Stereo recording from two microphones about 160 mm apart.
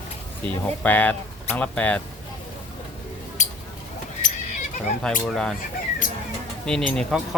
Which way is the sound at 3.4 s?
50° left (ahead or behind).